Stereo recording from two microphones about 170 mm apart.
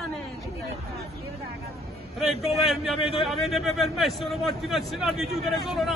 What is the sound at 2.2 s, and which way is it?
A man's voice, centre (ahead or behind).